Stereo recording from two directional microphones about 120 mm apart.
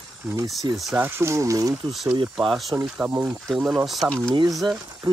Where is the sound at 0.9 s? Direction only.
20° right (ahead or behind).